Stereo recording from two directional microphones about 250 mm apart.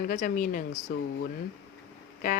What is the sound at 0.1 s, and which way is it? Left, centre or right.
Speech, left.